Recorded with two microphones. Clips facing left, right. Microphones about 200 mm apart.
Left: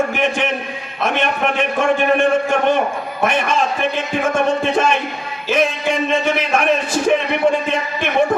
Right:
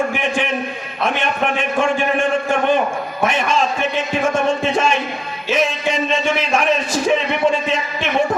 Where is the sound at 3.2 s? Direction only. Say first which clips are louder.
Left 1 dB; 55° left (ahead or behind).